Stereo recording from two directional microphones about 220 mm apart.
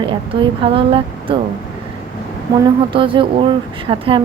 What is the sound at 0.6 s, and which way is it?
Speech, 25° right (ahead or behind).